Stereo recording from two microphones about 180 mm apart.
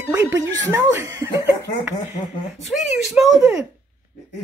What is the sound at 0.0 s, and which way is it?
Speech, 15° right (ahead or behind).